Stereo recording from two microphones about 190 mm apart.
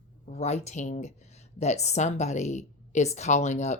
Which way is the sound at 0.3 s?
35° left (ahead or behind).